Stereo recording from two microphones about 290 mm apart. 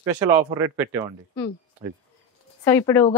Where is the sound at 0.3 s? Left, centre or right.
Centre.